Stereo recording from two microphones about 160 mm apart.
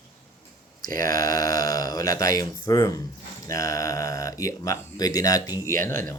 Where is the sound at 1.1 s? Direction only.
20° left (ahead or behind).